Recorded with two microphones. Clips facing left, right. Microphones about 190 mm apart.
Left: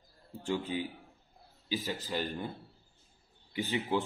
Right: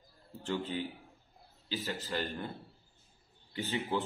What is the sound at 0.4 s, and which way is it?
Speech, 10° left (ahead or behind).